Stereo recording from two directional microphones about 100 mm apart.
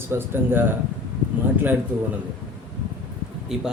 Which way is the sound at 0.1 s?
20° right (ahead or behind).